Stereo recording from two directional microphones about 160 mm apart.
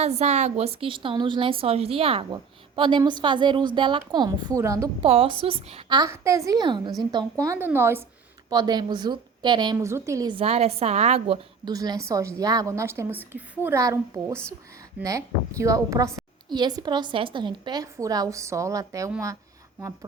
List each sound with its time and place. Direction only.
0.0 s a woman's voice: 45° right (ahead or behind); by 4.9 s 20° right (ahead or behind)
4.9 s a woman's voice: 35° right (ahead or behind)
6.0 s a woman's voice: 20° right (ahead or behind)
8.4 s a woman's voice: 25° right (ahead or behind)
9.7 s a woman's voice: 15° right (ahead or behind)
10.3 s a woman's voice: 40° right (ahead or behind)
11.6 s a woman's voice: 25° right (ahead or behind)